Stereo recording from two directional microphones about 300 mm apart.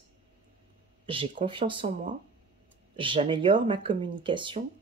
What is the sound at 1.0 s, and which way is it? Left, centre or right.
Speech, centre.